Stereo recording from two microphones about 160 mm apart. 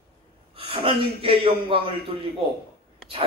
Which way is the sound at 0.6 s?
35° right (ahead or behind).